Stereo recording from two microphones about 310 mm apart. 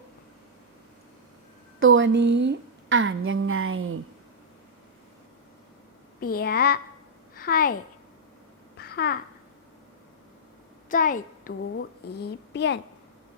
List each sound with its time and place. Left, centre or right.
1.8 s a woman's voice: right
6.1 s a child's voice: left
8.8 s babbling: left
10.8 s a child's voice: left